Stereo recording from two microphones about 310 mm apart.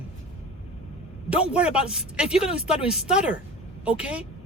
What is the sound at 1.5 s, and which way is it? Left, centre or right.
Speech, centre.